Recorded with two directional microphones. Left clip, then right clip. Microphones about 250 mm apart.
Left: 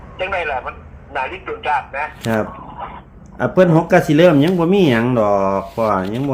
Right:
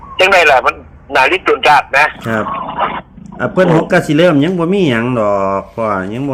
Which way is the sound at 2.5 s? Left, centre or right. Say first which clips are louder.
Right 14 dB; right.